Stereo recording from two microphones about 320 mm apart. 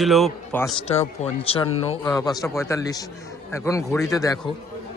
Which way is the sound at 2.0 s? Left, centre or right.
Centre.